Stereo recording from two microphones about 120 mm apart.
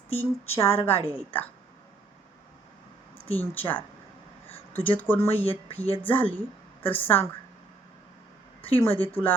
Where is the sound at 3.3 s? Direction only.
15° left (ahead or behind).